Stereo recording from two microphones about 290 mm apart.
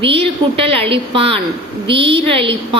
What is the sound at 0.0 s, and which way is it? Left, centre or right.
A woman's voice, centre.